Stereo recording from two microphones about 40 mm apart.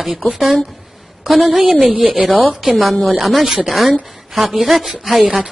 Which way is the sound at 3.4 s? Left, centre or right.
Centre.